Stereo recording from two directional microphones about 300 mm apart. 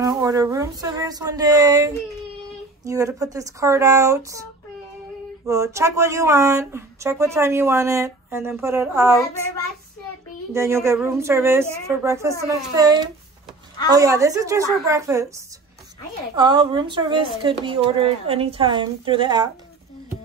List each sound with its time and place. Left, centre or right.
0.0 s speech: centre
5.5 s speech: centre
10.5 s speech: centre
16.3 s speech: centre